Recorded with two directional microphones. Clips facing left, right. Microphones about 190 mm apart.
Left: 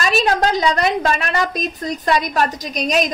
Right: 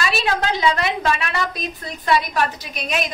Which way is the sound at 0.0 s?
40° left (ahead or behind).